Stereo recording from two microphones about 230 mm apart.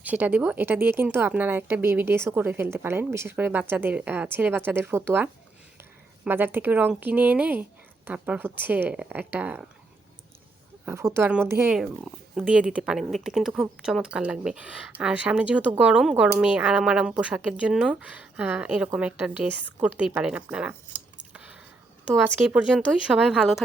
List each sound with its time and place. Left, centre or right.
0.0 s speech: centre
10.8 s speech: centre
21.3 s a sound: centre
22.1 s speech: centre